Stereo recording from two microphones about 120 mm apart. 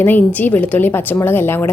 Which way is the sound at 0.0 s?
15° left (ahead or behind).